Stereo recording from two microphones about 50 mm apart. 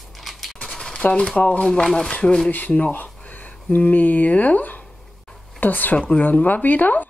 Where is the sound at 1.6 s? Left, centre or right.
Centre.